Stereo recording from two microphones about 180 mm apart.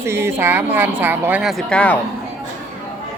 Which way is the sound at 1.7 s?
5° left (ahead or behind).